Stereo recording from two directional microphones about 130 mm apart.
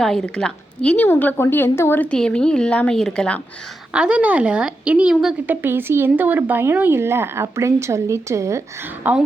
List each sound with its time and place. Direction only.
0.0 s a woman's voice: 5° left (ahead or behind)
3.9 s a woman's voice: 10° right (ahead or behind)